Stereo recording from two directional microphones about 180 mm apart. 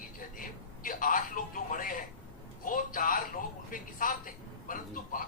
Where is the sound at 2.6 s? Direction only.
50° left (ahead or behind).